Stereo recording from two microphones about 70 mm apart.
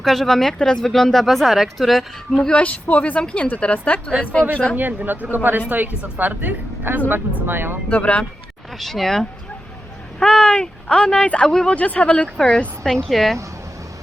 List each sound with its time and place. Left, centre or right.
0.0 s speech: centre
2.5 s a woman's voice: centre
4.8 s speech: right
7.9 s speech: centre
8.8 s speech: centre